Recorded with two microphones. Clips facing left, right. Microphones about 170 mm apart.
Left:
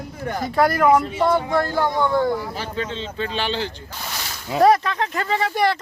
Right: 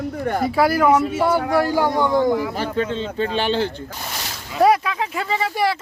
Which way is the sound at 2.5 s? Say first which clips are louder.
Right 5 dB; 50° right (ahead or behind).